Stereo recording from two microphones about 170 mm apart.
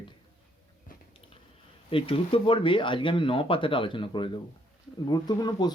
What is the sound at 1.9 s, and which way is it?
Speech, 30° left (ahead or behind).